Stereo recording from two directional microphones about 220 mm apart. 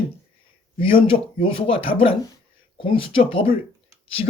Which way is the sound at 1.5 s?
25° left (ahead or behind).